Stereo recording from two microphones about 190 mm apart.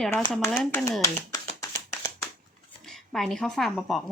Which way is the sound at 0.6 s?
5° left (ahead or behind).